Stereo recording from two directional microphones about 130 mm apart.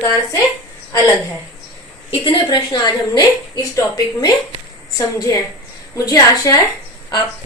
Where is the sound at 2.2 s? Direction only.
40° left (ahead or behind).